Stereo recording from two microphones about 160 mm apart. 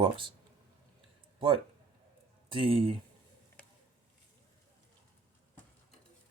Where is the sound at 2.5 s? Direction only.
35° right (ahead or behind).